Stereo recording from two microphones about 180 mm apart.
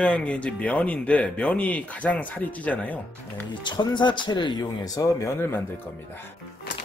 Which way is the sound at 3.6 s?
25° left (ahead or behind).